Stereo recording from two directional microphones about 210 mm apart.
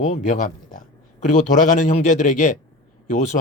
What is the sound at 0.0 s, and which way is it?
A man's voice, 35° left (ahead or behind).